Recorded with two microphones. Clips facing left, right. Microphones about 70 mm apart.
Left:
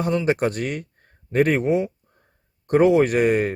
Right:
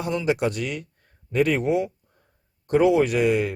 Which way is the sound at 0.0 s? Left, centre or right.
Left.